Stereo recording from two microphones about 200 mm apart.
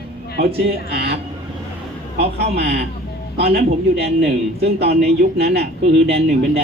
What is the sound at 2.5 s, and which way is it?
A man's voice, 55° right (ahead or behind).